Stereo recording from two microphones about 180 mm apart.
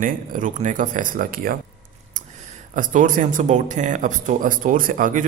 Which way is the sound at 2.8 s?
45° right (ahead or behind).